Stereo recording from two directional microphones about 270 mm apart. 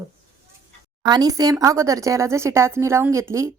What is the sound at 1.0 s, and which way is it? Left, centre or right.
Speech, centre.